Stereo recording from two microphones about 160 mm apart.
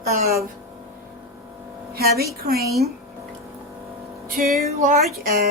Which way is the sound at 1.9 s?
75° right (ahead or behind).